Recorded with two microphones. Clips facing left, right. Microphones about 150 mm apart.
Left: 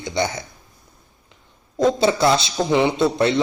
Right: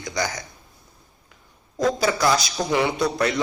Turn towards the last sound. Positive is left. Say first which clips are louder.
# left 4 dB
turn(degrees=25)  # may be behind; listen again after turning